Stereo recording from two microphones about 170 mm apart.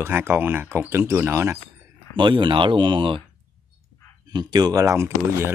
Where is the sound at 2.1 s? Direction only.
30° right (ahead or behind).